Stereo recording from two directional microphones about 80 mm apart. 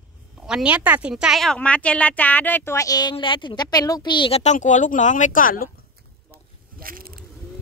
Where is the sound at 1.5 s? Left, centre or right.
Centre.